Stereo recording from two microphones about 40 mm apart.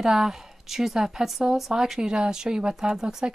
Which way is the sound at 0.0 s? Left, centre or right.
Centre.